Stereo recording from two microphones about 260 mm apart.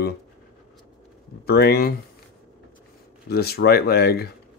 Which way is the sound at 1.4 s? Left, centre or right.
Left.